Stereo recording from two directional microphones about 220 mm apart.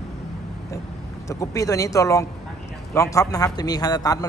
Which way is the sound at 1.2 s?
15° left (ahead or behind).